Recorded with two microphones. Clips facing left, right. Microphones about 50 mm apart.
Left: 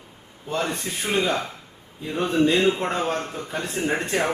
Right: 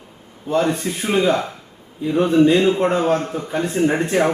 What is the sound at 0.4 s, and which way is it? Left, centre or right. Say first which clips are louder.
A man's voice: right 8 dB; centre.